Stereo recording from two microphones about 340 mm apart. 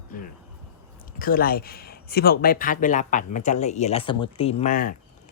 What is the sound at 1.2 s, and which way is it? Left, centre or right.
Speech, left.